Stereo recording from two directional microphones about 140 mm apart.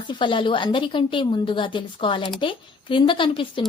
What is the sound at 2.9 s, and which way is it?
Speech, 35° left (ahead or behind).